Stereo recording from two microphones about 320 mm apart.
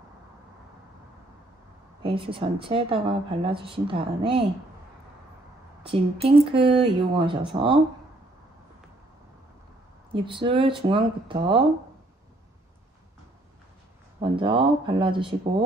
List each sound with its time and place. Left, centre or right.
2.0 s speech: centre
5.8 s speech: centre
10.1 s speech: centre
14.2 s speech: centre